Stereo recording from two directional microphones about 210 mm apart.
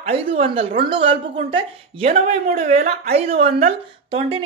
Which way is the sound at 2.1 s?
40° right (ahead or behind).